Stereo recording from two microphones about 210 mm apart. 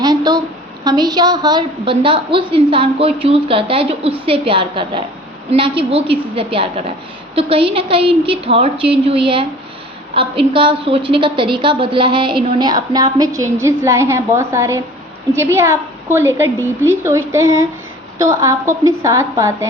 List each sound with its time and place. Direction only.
0.0 s a sound: 20° right (ahead or behind)
0.9 s a woman's voice: 20° right (ahead or behind)
16.1 s a woman's voice: 10° right (ahead or behind)